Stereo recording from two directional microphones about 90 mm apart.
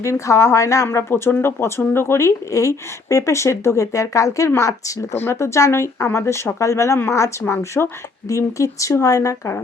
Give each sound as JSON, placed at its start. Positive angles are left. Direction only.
{"t": 0.0, "sound": "speech", "side_deg": 35}